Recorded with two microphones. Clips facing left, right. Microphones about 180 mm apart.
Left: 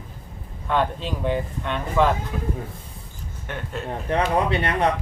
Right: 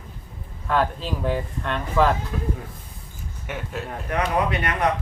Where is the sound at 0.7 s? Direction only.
Centre (ahead or behind).